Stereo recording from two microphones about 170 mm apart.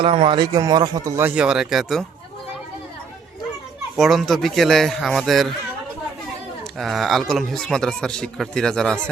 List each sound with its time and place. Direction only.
0.0 s speech: 30° right (ahead or behind); by 2.0 s centre (ahead or behind)
3.9 s speech: centre (ahead or behind)
6.7 s speech: centre (ahead or behind)